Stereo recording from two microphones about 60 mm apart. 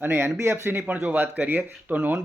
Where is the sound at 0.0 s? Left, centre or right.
Right.